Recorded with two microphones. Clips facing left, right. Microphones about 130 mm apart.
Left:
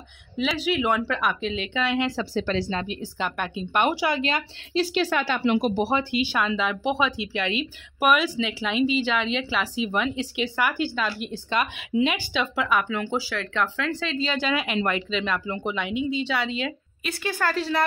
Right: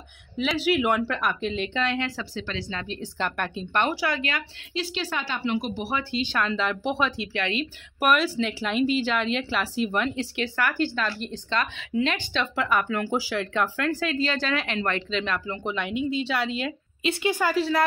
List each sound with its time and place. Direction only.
0.4 s speech: 5° right (ahead or behind)
2.0 s speech: 25° left (ahead or behind)
2.3 s speech: 40° left (ahead or behind)
2.9 s speech: 5° left (ahead or behind)
3.8 s speech: 15° left (ahead or behind)
4.9 s a woman's voice: 55° left (ahead or behind)
5.8 s speech: 30° left (ahead or behind)
6.1 s speech: 10° left (ahead or behind)
12.4 s speech: centre (ahead or behind)
13.1 s speech: 15° right (ahead or behind)
17.0 s speech: 20° right (ahead or behind); by 17.8 s 5° right (ahead or behind)